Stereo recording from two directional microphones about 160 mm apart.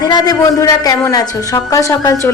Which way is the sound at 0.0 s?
25° left (ahead or behind).